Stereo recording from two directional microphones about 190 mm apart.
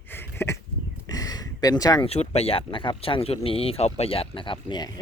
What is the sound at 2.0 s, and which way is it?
Speech, 35° left (ahead or behind).